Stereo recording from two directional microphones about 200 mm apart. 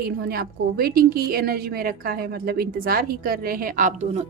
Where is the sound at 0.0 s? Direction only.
50° right (ahead or behind).